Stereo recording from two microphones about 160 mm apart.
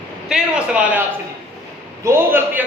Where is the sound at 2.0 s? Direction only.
15° right (ahead or behind).